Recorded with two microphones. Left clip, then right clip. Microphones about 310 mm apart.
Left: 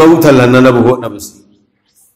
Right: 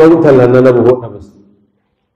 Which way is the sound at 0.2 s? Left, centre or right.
Left.